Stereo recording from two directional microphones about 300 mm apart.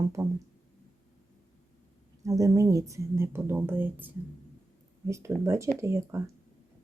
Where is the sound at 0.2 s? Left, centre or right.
Centre.